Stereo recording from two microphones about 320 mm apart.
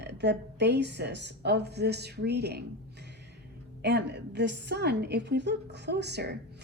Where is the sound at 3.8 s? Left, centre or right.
Right.